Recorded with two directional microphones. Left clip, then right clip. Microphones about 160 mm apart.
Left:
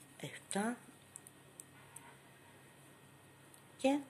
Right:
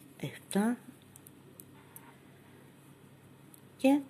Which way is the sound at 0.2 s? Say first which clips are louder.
Right 6 dB; 25° right (ahead or behind).